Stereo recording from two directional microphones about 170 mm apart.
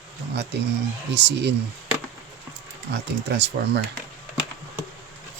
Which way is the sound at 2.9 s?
90° right.